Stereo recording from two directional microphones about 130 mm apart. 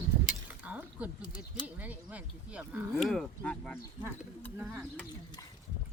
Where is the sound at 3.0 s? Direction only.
5° left (ahead or behind).